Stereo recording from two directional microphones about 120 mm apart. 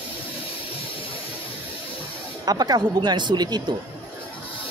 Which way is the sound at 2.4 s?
35° right (ahead or behind).